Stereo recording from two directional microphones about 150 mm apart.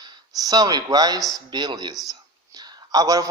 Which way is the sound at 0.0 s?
25° right (ahead or behind).